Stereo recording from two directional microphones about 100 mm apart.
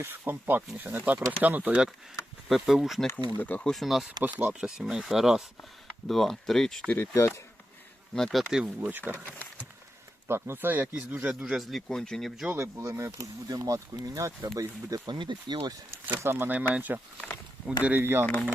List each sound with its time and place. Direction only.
0.0 s speech: 20° right (ahead or behind)
2.5 s speech: 5° right (ahead or behind)
3.2 s speech: 15° left (ahead or behind)
3.7 s speech: centre (ahead or behind)
4.2 s speech: 15° right (ahead or behind); by 6.9 s 5° left (ahead or behind)
7.1 s speech: 30° left (ahead or behind)
8.1 s speech: centre (ahead or behind)
8.8 s speech: 20° right (ahead or behind)
9.1 s speech: 15° left (ahead or behind)
10.2 s speech: 25° right (ahead or behind); by 12.3 s 5° left (ahead or behind)
12.5 s speech: 25° right (ahead or behind); by 15.7 s 50° right (ahead or behind)
16.0 s speech: 20° right (ahead or behind)